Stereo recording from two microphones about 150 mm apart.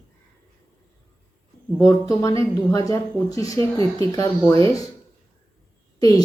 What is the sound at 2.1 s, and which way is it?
Speech, 25° left (ahead or behind).